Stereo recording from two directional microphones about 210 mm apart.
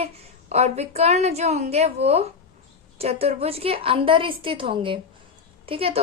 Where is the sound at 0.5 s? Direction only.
30° right (ahead or behind).